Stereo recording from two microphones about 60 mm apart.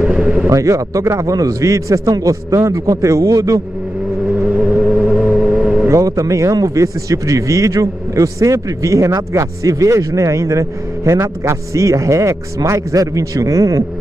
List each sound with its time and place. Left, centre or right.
0.0 s a sound: centre
0.5 s speech: right
4.5 s vehicle: right
5.9 s speech: right